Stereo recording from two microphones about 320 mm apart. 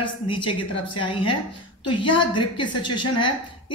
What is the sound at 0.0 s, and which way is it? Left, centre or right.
A woman's voice, centre.